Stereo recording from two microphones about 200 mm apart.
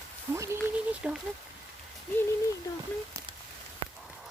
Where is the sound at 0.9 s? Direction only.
5° right (ahead or behind).